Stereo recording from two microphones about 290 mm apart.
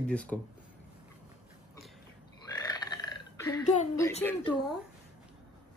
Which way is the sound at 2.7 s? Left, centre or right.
Centre.